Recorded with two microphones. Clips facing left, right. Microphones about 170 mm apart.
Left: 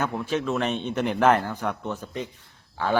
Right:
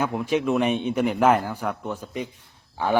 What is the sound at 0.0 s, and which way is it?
A man's voice, 15° right (ahead or behind).